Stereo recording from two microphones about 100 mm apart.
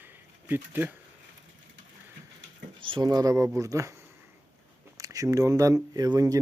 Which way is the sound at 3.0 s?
40° right (ahead or behind).